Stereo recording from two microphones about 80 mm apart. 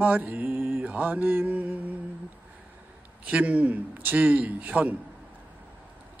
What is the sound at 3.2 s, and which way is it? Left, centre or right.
Mantra, centre.